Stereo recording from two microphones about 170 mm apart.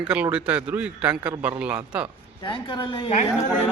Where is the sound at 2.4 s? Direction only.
30° left (ahead or behind).